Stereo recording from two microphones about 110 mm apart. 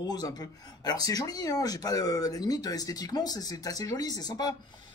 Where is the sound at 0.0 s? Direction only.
40° left (ahead or behind).